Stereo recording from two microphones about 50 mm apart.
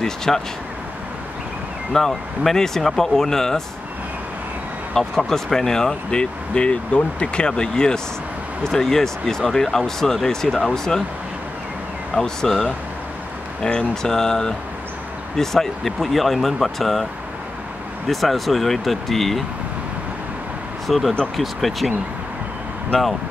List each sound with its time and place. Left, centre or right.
0.0 s speech: centre
1.9 s speech: centre
4.9 s speech: centre
12.2 s speech: centre
18.0 s speech: centre
20.8 s speech: centre
22.9 s speech: centre